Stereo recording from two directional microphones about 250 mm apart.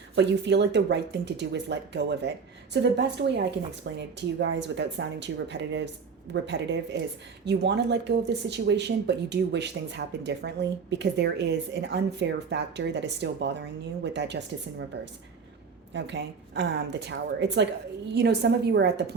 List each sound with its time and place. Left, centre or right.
0.2 s speech: right
15.9 s a woman's voice: right